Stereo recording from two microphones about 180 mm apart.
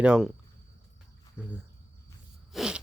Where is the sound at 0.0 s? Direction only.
5° right (ahead or behind).